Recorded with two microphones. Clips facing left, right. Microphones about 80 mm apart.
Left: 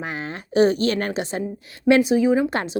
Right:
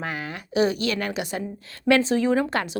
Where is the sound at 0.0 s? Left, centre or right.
Left.